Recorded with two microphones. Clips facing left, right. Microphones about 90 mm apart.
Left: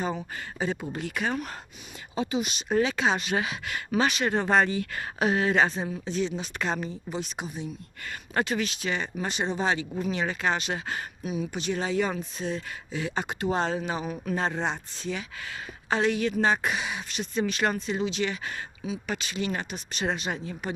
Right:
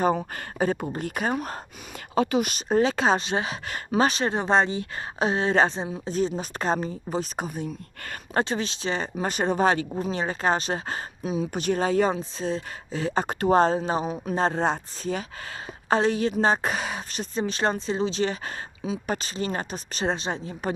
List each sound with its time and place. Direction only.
0.0 s speech: 50° right (ahead or behind)
2.1 s speech: 60° right (ahead or behind)
2.6 s speech: 35° right (ahead or behind)
4.4 s speech: 20° right (ahead or behind)
6.1 s speech: 40° right (ahead or behind)
8.4 s speech: 30° right (ahead or behind); by 9.8 s 50° right (ahead or behind)
9.9 s speech: 35° right (ahead or behind)
11.5 s speech: 45° right (ahead or behind)
14.1 s speech: 20° right (ahead or behind)
14.4 s speech: 40° right (ahead or behind)